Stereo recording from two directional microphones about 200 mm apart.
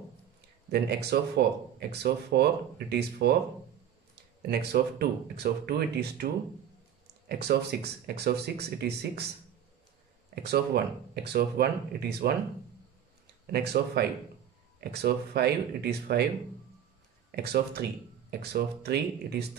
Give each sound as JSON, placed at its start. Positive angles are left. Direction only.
{"t": 0.7, "sound": "speech", "side_deg": -55}
{"t": 10.3, "sound": "speech", "side_deg": -55}
{"t": 13.5, "sound": "speech", "side_deg": -55}
{"t": 17.4, "sound": "speech", "side_deg": -55}